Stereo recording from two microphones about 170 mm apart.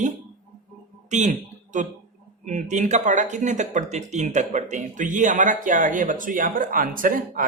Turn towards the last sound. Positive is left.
turn(degrees=-55)  # may be behind; listen again after turning